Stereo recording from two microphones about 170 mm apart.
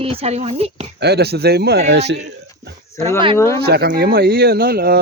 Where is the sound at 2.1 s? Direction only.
85° right.